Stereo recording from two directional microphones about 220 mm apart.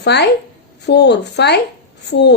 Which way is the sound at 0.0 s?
50° left (ahead or behind).